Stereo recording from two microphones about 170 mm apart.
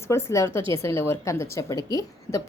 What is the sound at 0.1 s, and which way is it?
A woman's voice, 15° left (ahead or behind).